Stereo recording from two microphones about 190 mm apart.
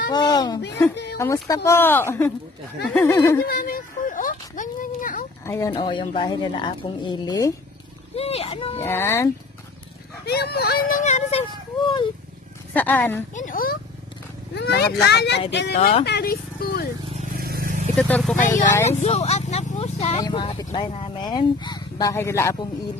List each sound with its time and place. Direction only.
0.1 s speech: 20° left (ahead or behind)
3.4 s speech: 50° left (ahead or behind)
5.4 s speech: 15° left (ahead or behind)
8.2 s speech: 30° left (ahead or behind)
8.7 s speech: 15° left (ahead or behind)
10.2 s speech: 60° left (ahead or behind)
11.1 s speech: 40° left (ahead or behind)
12.7 s speech: 10° left (ahead or behind)
13.3 s speech: 45° left (ahead or behind)
14.5 s speech: 60° left (ahead or behind)
17.4 s vehicle: 50° right (ahead or behind)
17.9 s speech: 5° left (ahead or behind)
18.9 s speech: 35° left (ahead or behind); by 22.7 s 15° left (ahead or behind)